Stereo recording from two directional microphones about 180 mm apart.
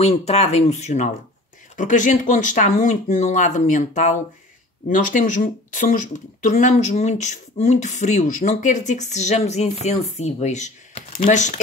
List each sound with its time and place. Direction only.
0.0 s speech: 35° left (ahead or behind)